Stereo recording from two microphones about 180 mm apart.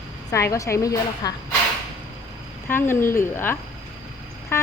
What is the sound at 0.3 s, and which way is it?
Speech, 15° left (ahead or behind).